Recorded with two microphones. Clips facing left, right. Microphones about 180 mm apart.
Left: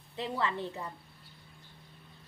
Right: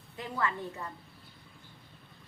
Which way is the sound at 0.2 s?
25° left (ahead or behind).